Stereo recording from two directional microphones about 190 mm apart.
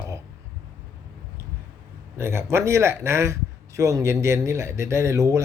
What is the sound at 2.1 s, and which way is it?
Speech, 15° right (ahead or behind).